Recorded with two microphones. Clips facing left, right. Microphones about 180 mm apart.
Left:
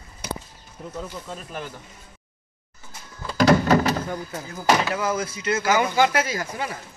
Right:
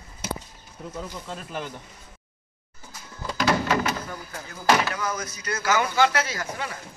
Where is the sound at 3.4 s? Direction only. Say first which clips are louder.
Left 6 dB; 35° left (ahead or behind).